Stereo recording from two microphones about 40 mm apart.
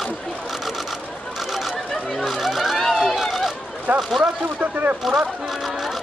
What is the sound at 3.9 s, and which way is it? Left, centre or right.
Speech, right.